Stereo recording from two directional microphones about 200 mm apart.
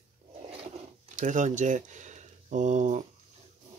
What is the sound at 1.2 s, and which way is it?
Speech, 40° right (ahead or behind).